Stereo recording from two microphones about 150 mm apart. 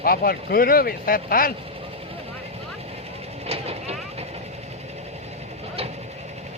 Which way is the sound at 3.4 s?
40° right (ahead or behind).